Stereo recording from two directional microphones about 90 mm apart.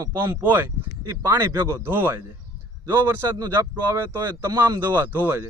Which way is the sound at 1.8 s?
25° right (ahead or behind).